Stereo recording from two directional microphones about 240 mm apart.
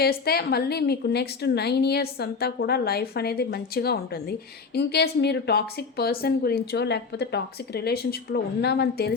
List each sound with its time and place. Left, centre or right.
0.0 s a woman's voice: left